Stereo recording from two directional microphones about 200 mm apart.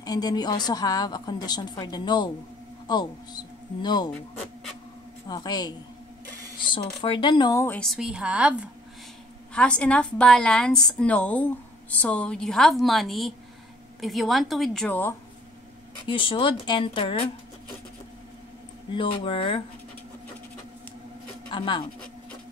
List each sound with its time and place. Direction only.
0.0 s a woman's voice: 20° left (ahead or behind)
5.3 s a woman's voice: 20° left (ahead or behind)
7.6 s a woman's voice: 5° left (ahead or behind)
9.5 s a woman's voice: 5° left (ahead or behind)
16.1 s a woman's voice: 25° left (ahead or behind)
18.9 s a woman's voice: 25° left (ahead or behind)
21.5 s speech: 25° left (ahead or behind)